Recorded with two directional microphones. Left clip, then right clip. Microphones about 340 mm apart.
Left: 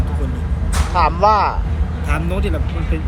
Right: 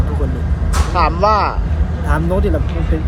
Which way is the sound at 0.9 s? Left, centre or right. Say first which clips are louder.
Even; centre.